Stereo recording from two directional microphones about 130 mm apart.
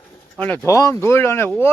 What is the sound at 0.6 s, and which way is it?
Speech, 25° left (ahead or behind).